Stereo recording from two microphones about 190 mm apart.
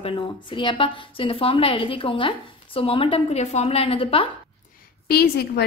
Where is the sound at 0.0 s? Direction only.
25° left (ahead or behind).